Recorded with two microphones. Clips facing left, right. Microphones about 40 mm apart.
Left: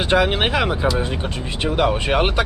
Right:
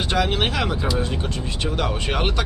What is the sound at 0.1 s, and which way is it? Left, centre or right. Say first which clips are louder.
Speech: left 5 dB; left.